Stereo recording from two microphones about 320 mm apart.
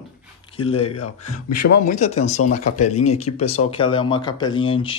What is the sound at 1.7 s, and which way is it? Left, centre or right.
Speech, left.